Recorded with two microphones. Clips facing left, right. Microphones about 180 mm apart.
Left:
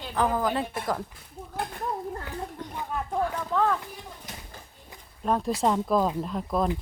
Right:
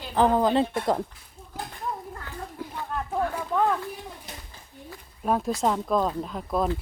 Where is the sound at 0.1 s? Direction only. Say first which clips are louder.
Right 5 dB; 25° right (ahead or behind).